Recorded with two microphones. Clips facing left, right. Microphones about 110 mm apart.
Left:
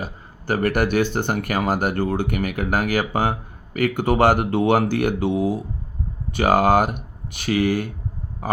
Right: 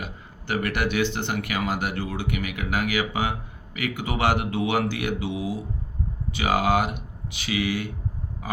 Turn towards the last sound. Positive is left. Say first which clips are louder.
# left 6 dB
turn(degrees=45)  # may be behind; listen again after turning